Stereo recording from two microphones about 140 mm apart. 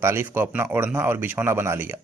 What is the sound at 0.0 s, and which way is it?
Speech, 15° right (ahead or behind).